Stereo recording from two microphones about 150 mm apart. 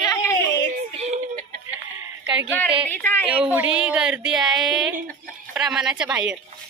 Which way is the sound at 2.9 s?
15° left (ahead or behind).